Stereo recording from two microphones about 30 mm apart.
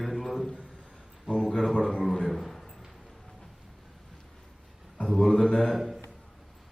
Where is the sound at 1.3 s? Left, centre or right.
Centre.